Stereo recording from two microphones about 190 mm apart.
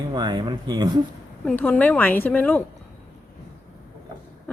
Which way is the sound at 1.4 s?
10° left (ahead or behind).